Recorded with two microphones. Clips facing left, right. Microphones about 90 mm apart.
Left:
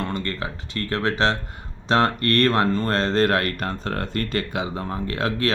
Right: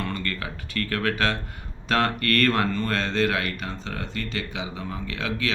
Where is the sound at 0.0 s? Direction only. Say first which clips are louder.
Left 3 dB; 25° left (ahead or behind).